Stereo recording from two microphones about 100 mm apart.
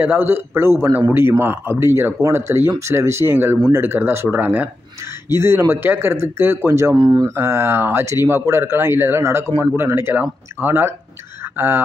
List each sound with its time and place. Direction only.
0.0 s speech: 20° right (ahead or behind)
7.0 s speech: 45° right (ahead or behind)
7.2 s speech: 25° right (ahead or behind)